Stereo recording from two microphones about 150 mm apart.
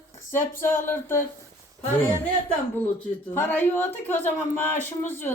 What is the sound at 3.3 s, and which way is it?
Speech, 15° left (ahead or behind).